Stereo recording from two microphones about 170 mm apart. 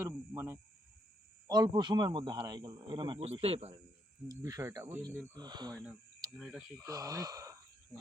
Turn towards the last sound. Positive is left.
turn(degrees=-20)  # may be behind; listen again after turning